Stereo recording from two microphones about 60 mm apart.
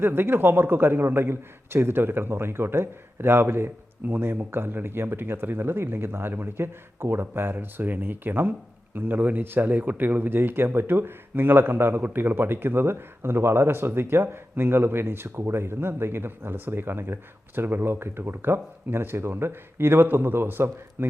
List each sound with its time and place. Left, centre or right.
0.0 s speech: right